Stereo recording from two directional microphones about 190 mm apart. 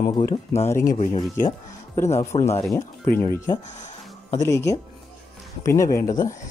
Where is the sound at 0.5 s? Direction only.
15° left (ahead or behind).